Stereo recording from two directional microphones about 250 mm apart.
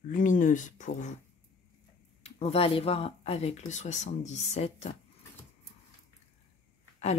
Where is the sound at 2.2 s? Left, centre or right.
Left.